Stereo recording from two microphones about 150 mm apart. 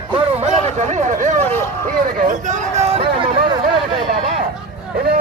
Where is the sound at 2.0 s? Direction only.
60° right (ahead or behind); by 3.3 s 45° right (ahead or behind).